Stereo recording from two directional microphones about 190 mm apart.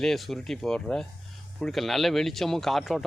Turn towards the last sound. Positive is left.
turn(degrees=0)  # may be behind; listen again after turning